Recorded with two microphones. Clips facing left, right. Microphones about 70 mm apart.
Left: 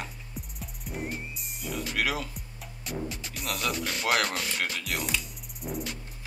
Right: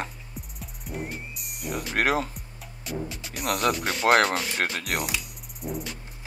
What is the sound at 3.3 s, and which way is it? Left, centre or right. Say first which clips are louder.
Speech: right 8 dB; right.